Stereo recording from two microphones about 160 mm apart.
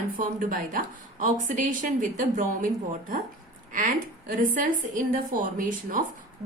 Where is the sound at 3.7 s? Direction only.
60° right (ahead or behind).